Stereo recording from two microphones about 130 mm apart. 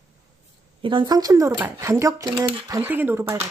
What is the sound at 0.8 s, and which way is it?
Speech, 40° right (ahead or behind).